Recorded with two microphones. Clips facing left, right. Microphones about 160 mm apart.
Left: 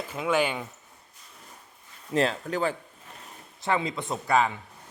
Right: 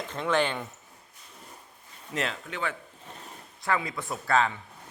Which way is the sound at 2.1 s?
35° left (ahead or behind).